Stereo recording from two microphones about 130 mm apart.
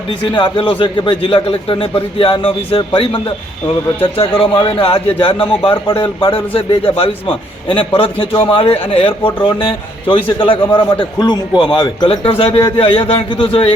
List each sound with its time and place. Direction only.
0.1 s a man's voice: 40° left (ahead or behind)
4.2 s a man's voice: 45° left (ahead or behind)